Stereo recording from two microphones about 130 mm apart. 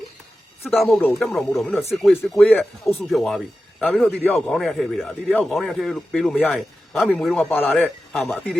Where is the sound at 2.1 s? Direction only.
15° left (ahead or behind).